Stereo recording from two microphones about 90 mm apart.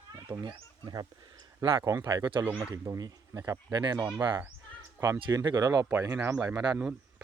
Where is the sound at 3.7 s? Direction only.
50° right (ahead or behind).